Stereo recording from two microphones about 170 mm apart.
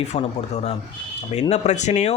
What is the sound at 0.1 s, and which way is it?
Speech, 40° left (ahead or behind).